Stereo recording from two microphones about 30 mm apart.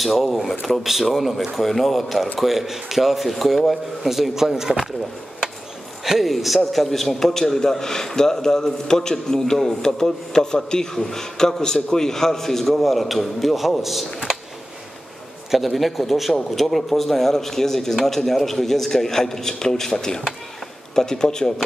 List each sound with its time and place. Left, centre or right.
0.0 s a man's voice: centre
6.0 s a man's voice: centre
15.5 s a man's voice: centre; by 21.5 s left